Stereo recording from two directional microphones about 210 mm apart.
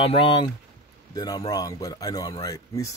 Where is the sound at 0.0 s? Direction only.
25° left (ahead or behind).